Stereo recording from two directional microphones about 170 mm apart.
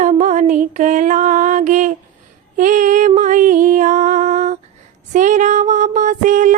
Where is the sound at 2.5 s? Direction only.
50° right (ahead or behind).